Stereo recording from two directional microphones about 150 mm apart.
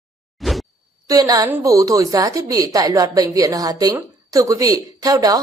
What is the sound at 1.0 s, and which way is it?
A woman's voice, 25° right (ahead or behind).